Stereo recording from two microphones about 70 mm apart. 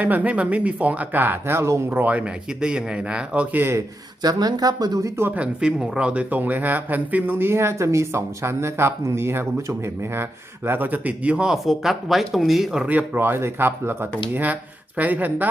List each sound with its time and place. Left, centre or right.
0.0 s speech: right
1.9 s speech: right
3.6 s speech: right
4.2 s speech: right
5.0 s speech: right
5.3 s speech: centre; by 10.2 s right
10.7 s speech: right
11.4 s speech: centre
12.8 s speech: right